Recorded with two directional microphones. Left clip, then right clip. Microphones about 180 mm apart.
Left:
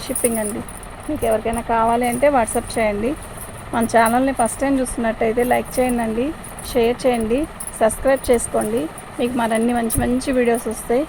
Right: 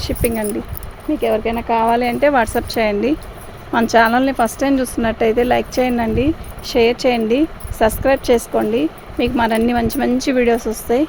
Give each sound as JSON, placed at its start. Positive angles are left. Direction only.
{"t": 0.0, "sound": "speech", "side_deg": -60}